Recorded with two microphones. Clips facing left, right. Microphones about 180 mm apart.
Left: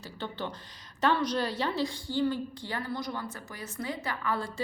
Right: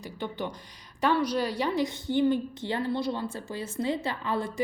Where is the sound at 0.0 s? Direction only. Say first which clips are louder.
Right 3 dB; 15° right (ahead or behind).